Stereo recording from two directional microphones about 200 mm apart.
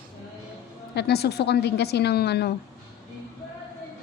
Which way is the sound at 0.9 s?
55° left (ahead or behind).